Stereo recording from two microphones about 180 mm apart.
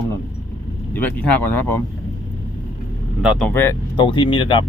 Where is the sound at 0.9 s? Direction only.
10° left (ahead or behind).